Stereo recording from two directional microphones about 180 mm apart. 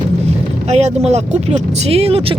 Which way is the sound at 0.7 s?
35° right (ahead or behind).